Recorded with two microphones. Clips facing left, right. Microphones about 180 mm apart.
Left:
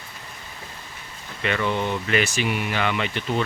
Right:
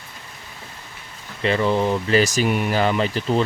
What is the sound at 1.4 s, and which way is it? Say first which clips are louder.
A man's voice: right 5 dB; 30° right (ahead or behind).